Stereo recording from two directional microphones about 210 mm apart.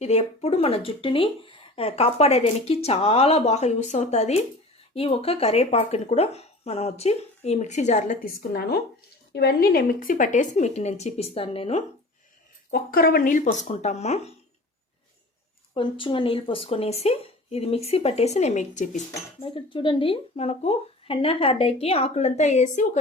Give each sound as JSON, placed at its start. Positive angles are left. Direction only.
{"t": 0.0, "sound": "speech", "side_deg": 30}
{"t": 12.7, "sound": "speech", "side_deg": 45}
{"t": 15.7, "sound": "speech", "side_deg": 25}